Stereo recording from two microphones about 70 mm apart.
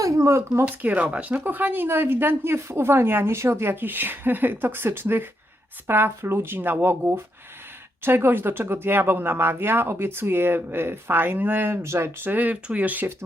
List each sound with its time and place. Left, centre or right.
0.0 s speech: right
0.6 s speech: right
12.2 s speech: right